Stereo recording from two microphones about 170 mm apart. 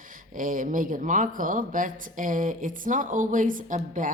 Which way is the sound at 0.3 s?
50° right (ahead or behind).